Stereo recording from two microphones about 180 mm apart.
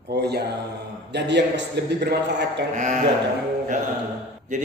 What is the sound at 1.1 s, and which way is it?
A man's voice, 75° right (ahead or behind).